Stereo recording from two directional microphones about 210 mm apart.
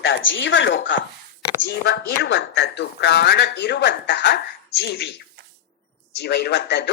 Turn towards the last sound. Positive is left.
turn(degrees=55)  # may be behind; listen again after turning